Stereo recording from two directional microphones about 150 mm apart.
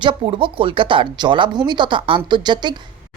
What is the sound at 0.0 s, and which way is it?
Speech, 35° right (ahead or behind).